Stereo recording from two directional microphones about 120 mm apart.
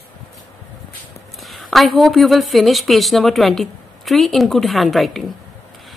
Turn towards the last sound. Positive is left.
turn(degrees=0)  # may be behind; listen again after turning